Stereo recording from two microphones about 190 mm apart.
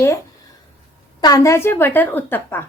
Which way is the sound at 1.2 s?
20° left (ahead or behind).